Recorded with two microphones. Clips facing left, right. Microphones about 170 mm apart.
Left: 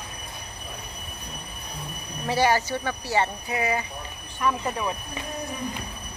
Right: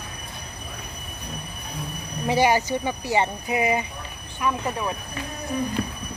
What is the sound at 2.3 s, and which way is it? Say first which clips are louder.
Speech: right 2 dB; 15° right (ahead or behind).